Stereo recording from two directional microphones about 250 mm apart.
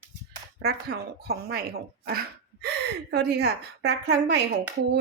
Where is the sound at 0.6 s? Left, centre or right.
Right.